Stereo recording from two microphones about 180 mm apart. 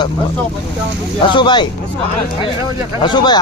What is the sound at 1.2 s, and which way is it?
Speech, 25° left (ahead or behind).